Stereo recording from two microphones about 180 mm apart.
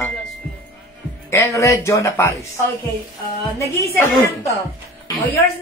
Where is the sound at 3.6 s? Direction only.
15° left (ahead or behind).